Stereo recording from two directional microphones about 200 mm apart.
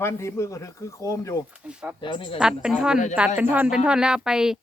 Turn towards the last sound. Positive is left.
turn(degrees=-5)  # may be behind; listen again after turning